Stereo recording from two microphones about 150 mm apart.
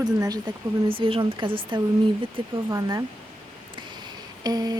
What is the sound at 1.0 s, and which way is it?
Speech, 35° right (ahead or behind).